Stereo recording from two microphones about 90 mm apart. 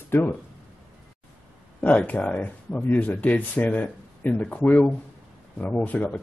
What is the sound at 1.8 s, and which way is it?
Speech, 15° left (ahead or behind).